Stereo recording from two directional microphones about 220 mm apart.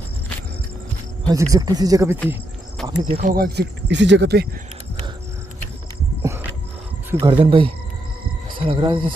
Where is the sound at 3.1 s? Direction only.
45° right (ahead or behind).